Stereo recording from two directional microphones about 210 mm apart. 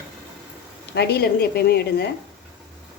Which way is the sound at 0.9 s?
50° left (ahead or behind).